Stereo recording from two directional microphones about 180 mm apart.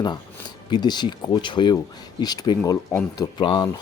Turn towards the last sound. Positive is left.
turn(degrees=25)  # may be behind; listen again after turning